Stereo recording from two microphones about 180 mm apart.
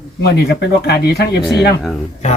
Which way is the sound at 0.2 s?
60° left (ahead or behind).